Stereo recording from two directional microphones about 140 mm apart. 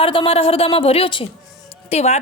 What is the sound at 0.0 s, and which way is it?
A woman's voice, 40° left (ahead or behind).